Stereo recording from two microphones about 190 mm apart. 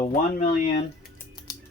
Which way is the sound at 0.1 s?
40° left (ahead or behind).